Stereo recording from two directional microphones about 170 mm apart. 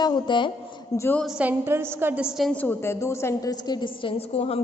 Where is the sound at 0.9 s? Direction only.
15° left (ahead or behind).